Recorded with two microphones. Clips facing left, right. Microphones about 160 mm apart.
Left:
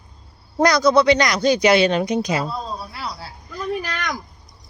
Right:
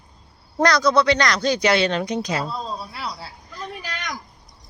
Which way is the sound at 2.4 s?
Centre (ahead or behind).